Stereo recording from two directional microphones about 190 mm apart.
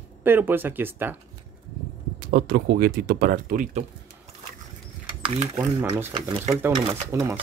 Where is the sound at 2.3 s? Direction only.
55° right (ahead or behind).